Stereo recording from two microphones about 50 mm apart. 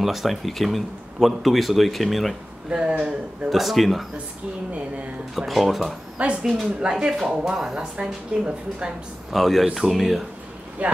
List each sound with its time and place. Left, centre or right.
0.0 s speech: centre
2.7 s speech: centre
3.4 s speech: centre
5.3 s speech: centre
6.2 s speech: right
6.8 s speech: centre
9.3 s speech: centre
10.8 s speech: right